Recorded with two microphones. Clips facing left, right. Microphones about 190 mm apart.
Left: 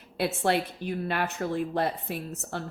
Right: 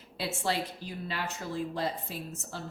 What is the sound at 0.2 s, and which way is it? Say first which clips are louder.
Speech: left 6 dB; 60° left (ahead or behind).